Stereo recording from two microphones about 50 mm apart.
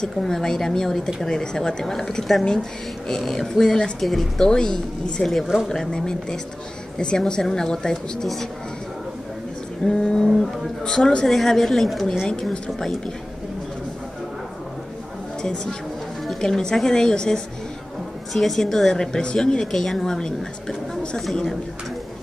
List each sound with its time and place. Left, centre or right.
0.0 s a woman's voice: centre
9.8 s a woman's voice: centre
11.2 s a woman's voice: centre
12.6 s a woman's voice: centre
15.4 s a woman's voice: centre
18.3 s a woman's voice: centre